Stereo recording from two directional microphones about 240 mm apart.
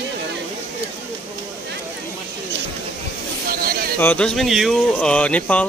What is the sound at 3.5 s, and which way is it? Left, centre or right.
Speech, right.